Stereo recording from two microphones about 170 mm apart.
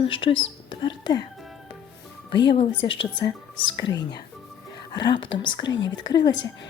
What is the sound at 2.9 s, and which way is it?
A woman's voice, 30° left (ahead or behind).